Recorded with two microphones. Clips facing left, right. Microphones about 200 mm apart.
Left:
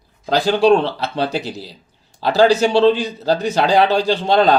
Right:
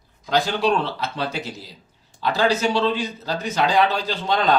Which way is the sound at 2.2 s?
30° left (ahead or behind).